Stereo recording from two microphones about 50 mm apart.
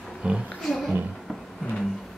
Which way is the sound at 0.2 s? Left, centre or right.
Right.